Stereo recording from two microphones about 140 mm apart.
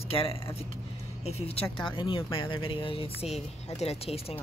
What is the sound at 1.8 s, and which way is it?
Speech, 35° left (ahead or behind).